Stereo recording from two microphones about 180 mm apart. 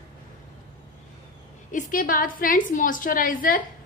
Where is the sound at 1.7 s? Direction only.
45° left (ahead or behind).